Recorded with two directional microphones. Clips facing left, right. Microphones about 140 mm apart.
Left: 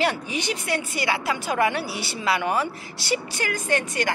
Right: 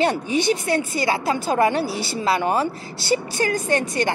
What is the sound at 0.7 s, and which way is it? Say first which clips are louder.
A woman's voice: right 4 dB; 30° right (ahead or behind).